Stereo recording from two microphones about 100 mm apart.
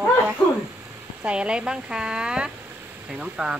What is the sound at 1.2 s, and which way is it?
Speech, 10° right (ahead or behind).